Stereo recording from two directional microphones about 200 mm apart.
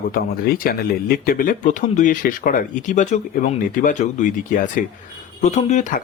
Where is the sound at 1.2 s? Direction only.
45° left (ahead or behind).